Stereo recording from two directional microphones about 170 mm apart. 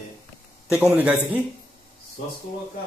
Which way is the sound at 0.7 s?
10° right (ahead or behind).